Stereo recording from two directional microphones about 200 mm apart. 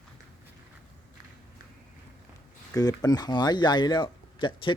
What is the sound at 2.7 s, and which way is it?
Speech, 20° left (ahead or behind).